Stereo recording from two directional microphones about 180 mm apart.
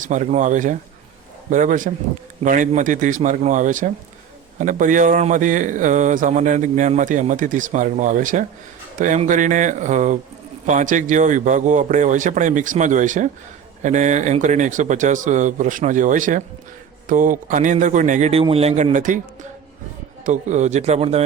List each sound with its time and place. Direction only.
0.0 s speech: 40° right (ahead or behind)